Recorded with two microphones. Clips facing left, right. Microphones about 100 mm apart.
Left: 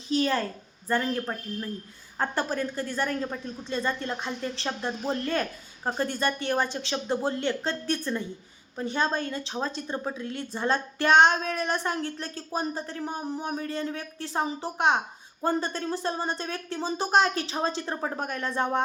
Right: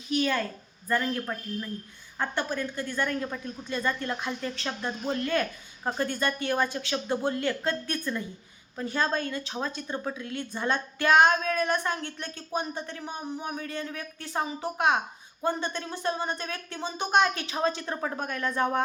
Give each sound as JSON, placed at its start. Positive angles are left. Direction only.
{"t": 0.1, "sound": "a child's voice", "side_deg": 35}